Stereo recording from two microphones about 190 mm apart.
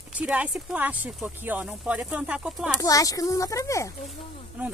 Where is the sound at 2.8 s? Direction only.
20° left (ahead or behind).